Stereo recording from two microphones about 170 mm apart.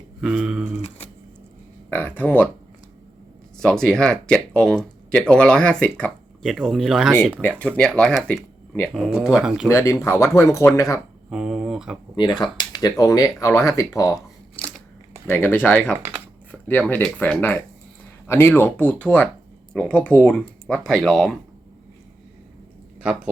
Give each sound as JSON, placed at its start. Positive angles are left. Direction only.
{"t": 0.2, "sound": "speech", "side_deg": -5}
{"t": 1.9, "sound": "speech", "side_deg": 10}
{"t": 3.6, "sound": "speech", "side_deg": 5}
{"t": 9.6, "sound": "speech", "side_deg": 20}
{"t": 11.3, "sound": "speech", "side_deg": 0}
{"t": 12.1, "sound": "speech", "side_deg": 25}
{"t": 15.3, "sound": "speech", "side_deg": 10}
{"t": 23.0, "sound": "speech", "side_deg": -5}